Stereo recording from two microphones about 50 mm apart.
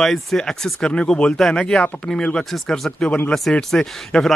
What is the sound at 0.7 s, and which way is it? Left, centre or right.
Speech, left.